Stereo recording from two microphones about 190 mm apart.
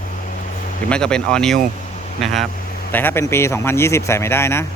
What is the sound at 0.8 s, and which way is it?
Speech, 5° left (ahead or behind).